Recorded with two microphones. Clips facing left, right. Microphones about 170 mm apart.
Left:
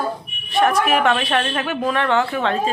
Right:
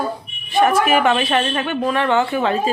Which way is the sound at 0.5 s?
Centre (ahead or behind).